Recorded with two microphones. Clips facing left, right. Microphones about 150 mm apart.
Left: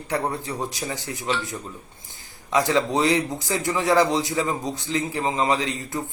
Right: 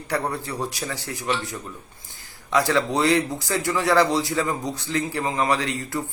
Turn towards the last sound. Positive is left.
turn(degrees=20)  # may be behind; listen again after turning